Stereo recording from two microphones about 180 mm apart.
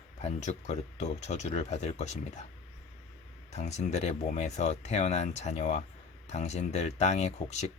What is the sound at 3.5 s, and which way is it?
Speech, 40° left (ahead or behind).